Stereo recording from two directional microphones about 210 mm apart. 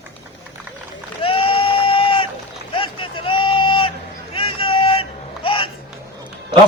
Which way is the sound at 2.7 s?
25° left (ahead or behind).